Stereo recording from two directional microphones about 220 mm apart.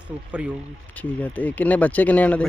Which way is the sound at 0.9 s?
5° left (ahead or behind).